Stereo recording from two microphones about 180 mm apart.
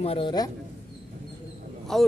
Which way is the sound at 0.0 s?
30° left (ahead or behind).